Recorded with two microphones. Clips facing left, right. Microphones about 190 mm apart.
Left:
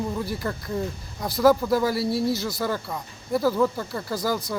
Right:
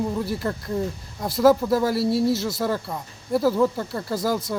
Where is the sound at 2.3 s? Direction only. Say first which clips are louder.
Right 3 dB; 25° right (ahead or behind).